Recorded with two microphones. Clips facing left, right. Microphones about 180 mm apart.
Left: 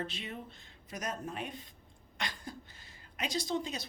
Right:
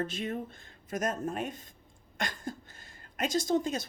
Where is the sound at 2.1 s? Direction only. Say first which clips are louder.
Right 5 dB; 50° right (ahead or behind).